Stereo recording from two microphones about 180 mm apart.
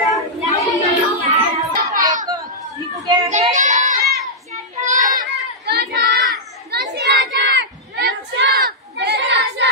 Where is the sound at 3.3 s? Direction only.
40° right (ahead or behind).